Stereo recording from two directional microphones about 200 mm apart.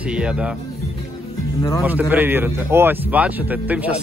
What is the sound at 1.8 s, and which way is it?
Speech, 10° right (ahead or behind).